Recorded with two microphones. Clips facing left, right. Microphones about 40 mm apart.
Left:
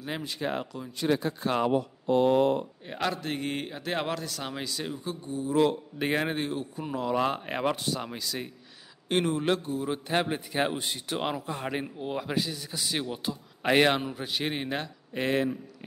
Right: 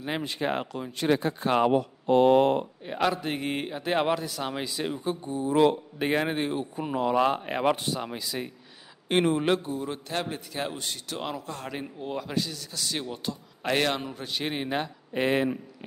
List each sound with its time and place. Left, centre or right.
0.0 s speech: right
0.7 s speech: right
1.2 s speech: right
1.7 s speech: right
2.9 s a man's voice: centre; by 5.8 s right
5.9 s a man's voice: centre
6.3 s speech: right
7.2 s a man's voice: centre
7.6 s a man's voice: centre
9.1 s speech: right
9.4 s a man's voice: centre
9.8 s a man's voice: centre
14.8 s speech: centre